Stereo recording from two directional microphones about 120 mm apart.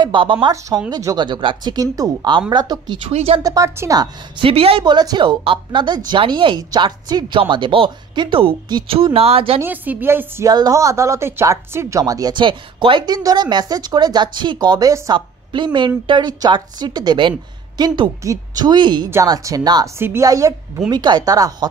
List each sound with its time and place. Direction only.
0.0 s speech: 45° right (ahead or behind)
3.1 s speech: 65° right (ahead or behind)
3.3 s a woman's voice: 30° right (ahead or behind)
4.0 s speech: 50° right (ahead or behind)
9.6 s a woman's voice: 15° right (ahead or behind)
10.5 s speech: 30° right (ahead or behind)
20.0 s a woman's voice: 20° right (ahead or behind)